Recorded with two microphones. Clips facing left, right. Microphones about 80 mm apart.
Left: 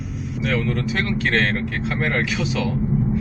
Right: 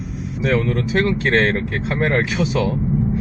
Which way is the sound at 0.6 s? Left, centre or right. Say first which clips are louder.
Right 4 dB; right.